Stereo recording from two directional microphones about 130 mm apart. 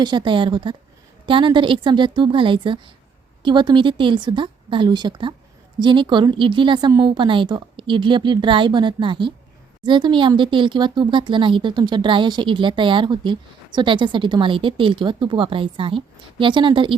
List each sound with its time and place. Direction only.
0.0 s speech: 35° right (ahead or behind)